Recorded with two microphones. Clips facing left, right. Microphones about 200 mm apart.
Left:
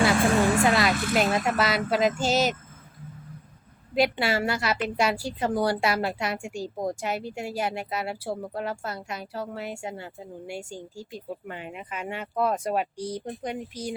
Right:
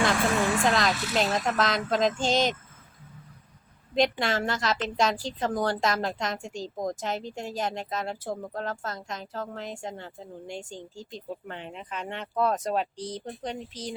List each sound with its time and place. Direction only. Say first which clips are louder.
0.6 s a woman's voice: left 3 dB; 10° left (ahead or behind)
3.9 s a woman's voice: left 1 dB; 10° left (ahead or behind)